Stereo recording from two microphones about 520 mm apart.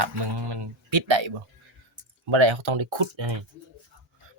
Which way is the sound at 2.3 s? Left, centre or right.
Right.